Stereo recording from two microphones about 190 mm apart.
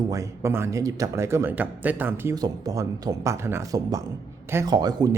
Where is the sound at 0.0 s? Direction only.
15° right (ahead or behind).